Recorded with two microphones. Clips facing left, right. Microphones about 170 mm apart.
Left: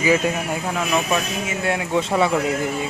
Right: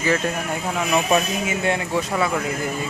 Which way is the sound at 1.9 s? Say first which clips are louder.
Left 3 dB; 20° left (ahead or behind).